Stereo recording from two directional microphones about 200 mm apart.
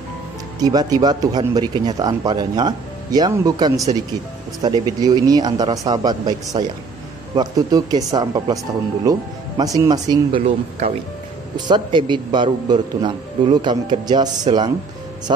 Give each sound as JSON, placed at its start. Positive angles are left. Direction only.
{"t": 0.6, "sound": "speech", "side_deg": -20}
{"t": 11.5, "sound": "speech", "side_deg": -20}